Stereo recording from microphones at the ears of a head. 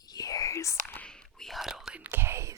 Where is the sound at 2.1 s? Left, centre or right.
Right.